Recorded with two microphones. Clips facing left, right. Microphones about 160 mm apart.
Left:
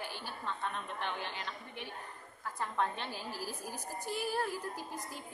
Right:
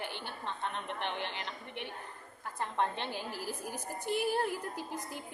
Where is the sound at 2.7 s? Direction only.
20° right (ahead or behind).